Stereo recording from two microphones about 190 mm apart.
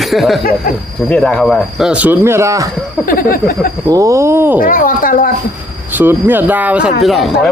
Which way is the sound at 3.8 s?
20° right (ahead or behind).